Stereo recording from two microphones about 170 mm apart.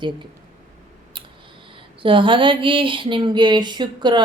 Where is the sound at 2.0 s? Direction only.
30° right (ahead or behind).